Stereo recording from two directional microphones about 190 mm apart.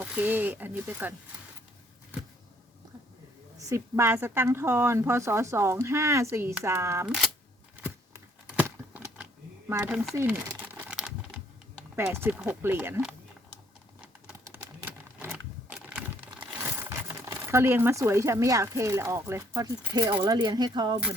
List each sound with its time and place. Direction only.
0.0 s speech: 5° right (ahead or behind)
3.6 s speech: 15° right (ahead or behind)
8.5 s a sound: 10° right (ahead or behind)
9.6 s speech: 10° right (ahead or behind)
10.2 s crumpling: 10° right (ahead or behind)
11.9 s speech: 10° right (ahead or behind)
14.4 s a sound: 10° right (ahead or behind)
17.1 s speech: 15° right (ahead or behind)